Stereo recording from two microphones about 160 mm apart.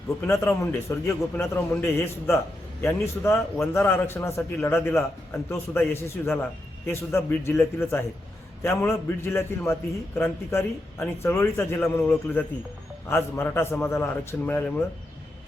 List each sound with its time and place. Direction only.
0.3 s a man's voice: 15° left (ahead or behind)